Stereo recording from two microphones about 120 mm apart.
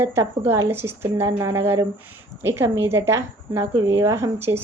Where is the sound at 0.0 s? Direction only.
20° right (ahead or behind).